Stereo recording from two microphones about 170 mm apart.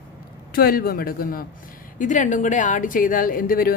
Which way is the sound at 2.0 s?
50° left (ahead or behind).